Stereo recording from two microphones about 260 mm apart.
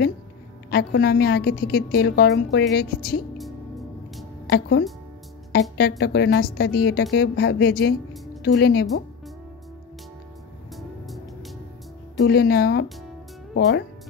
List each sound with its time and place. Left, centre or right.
0.7 s a woman's voice: left
3.3 s music: centre
4.5 s a woman's voice: left
12.2 s a woman's voice: left